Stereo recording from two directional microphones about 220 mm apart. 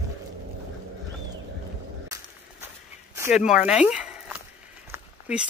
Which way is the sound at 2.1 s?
15° right (ahead or behind).